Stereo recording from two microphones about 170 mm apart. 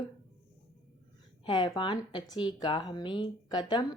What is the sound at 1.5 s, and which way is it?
Speech, 25° left (ahead or behind).